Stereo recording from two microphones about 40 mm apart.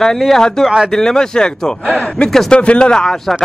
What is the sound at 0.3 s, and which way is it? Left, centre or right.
Speech, centre.